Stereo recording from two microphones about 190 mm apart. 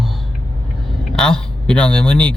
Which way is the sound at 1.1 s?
5° left (ahead or behind).